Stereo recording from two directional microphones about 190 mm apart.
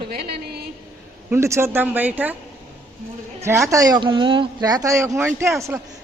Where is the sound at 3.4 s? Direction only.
15° right (ahead or behind).